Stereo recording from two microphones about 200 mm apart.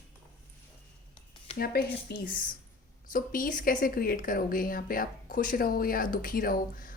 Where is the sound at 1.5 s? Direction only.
50° left (ahead or behind).